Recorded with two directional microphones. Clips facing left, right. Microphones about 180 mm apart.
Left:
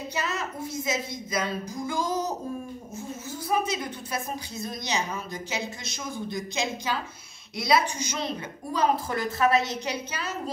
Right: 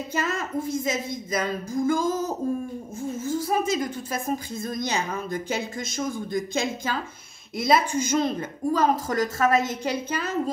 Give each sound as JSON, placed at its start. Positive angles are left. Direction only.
{"t": 0.1, "sound": "a woman's voice", "side_deg": -50}